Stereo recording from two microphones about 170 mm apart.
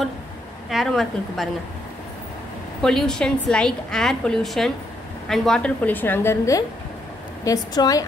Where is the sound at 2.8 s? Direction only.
5° left (ahead or behind); by 8.0 s 20° left (ahead or behind).